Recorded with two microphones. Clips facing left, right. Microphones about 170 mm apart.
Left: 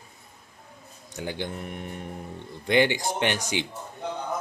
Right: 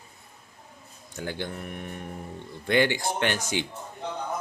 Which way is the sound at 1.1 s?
15° left (ahead or behind).